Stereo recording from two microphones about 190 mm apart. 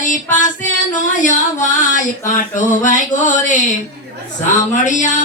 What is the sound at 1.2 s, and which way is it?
Speech, 40° left (ahead or behind).